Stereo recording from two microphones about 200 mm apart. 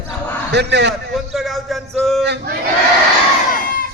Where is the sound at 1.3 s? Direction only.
Centre (ahead or behind).